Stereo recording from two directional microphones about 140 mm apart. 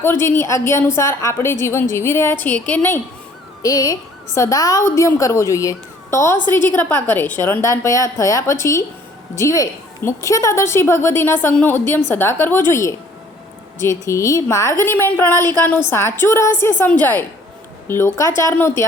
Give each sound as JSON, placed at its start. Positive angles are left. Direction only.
{"t": 0.0, "sound": "a woman's voice", "side_deg": 15}
{"t": 3.6, "sound": "a woman's voice", "side_deg": 25}